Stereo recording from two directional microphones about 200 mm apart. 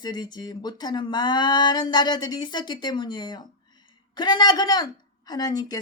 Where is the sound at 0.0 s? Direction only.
20° left (ahead or behind).